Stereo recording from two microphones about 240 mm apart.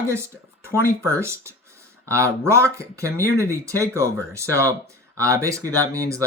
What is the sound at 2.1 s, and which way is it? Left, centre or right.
Speech, centre.